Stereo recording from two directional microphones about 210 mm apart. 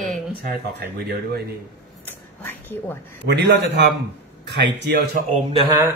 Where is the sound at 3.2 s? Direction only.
55° right (ahead or behind).